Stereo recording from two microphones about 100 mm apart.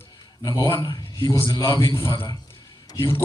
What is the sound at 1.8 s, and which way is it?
Speech, 25° left (ahead or behind).